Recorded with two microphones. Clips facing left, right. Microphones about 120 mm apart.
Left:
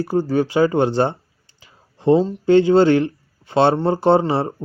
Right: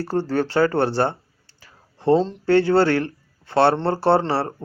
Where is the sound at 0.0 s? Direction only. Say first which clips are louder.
Left 3 dB; 10° left (ahead or behind).